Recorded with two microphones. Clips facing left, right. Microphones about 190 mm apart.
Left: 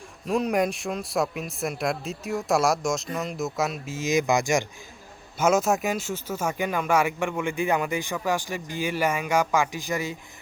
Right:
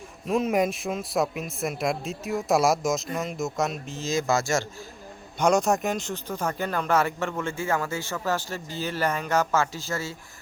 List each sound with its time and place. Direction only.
0.3 s a man's voice: centre (ahead or behind)
4.0 s speech: 15° left (ahead or behind)
5.4 s a man's voice: 5° left (ahead or behind)